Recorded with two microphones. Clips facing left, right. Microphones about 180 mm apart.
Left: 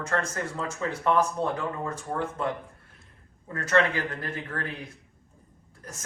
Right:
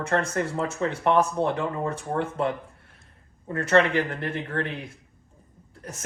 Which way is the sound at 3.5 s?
20° right (ahead or behind).